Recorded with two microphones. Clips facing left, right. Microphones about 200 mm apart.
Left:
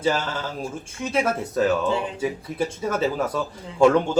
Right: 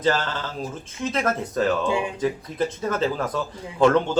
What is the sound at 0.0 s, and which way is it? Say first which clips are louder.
Speech: even; 10° left (ahead or behind).